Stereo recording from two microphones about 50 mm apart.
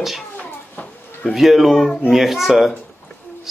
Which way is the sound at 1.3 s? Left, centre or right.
Centre.